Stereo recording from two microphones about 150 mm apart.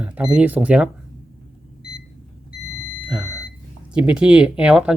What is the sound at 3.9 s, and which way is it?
Speech, 5° right (ahead or behind).